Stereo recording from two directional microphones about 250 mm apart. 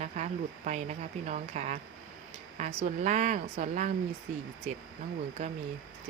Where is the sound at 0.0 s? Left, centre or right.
Right.